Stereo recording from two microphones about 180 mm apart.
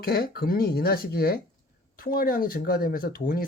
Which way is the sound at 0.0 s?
60° left (ahead or behind).